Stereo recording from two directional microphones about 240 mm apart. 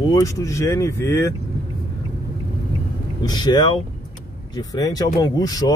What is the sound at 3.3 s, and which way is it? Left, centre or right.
Speech, centre.